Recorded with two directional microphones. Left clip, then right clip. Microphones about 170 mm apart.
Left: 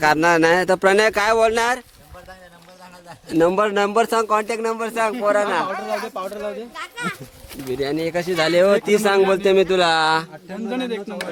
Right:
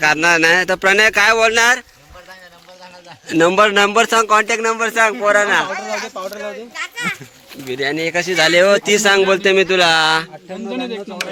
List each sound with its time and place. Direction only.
0.0 s speech: 25° left (ahead or behind)
3.2 s speech: 5° right (ahead or behind)
6.2 s speech: 25° right (ahead or behind)
6.7 s speech: 25° left (ahead or behind)
7.7 s speech: 5° left (ahead or behind)